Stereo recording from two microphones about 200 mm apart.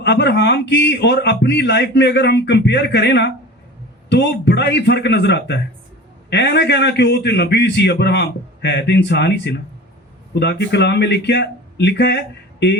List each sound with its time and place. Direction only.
0.0 s a man's voice: 55° left (ahead or behind)